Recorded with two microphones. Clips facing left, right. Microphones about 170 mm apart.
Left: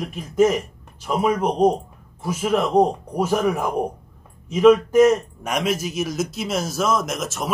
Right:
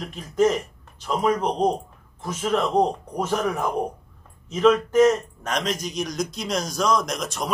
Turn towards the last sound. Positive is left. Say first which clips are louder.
# left 1 dB
turn(degrees=5)  # may be behind; listen again after turning